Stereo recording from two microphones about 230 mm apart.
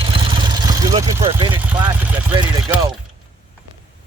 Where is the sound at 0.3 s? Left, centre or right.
Centre.